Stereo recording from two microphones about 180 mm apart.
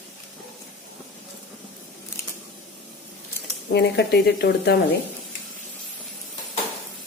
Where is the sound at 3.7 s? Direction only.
65° left (ahead or behind).